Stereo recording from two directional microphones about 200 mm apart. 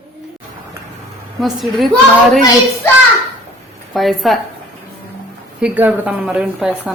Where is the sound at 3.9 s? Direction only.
Centre (ahead or behind).